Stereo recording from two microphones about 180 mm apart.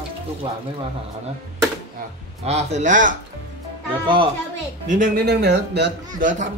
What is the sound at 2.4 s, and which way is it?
Speech, 40° right (ahead or behind).